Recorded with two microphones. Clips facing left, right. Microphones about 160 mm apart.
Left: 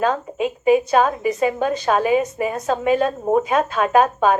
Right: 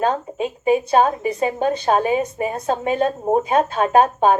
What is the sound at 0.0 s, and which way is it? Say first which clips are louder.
A woman's voice: even; 30° right (ahead or behind).